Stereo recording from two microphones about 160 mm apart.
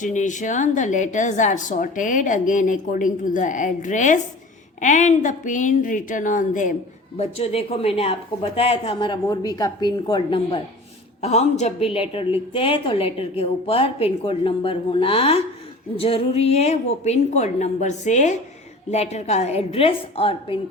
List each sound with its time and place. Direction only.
0.0 s a woman's voice: 50° left (ahead or behind)
7.2 s a woman's voice: 40° left (ahead or behind)
11.2 s a woman's voice: 45° left (ahead or behind)